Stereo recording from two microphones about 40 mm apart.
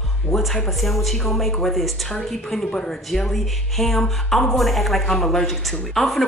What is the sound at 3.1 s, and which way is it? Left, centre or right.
A woman's voice, centre.